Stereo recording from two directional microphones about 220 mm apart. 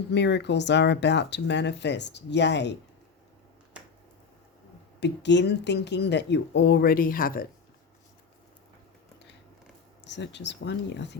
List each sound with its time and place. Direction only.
0.1 s speech: 50° left (ahead or behind)
4.9 s speech: 50° left (ahead or behind)
10.0 s speech: 50° left (ahead or behind)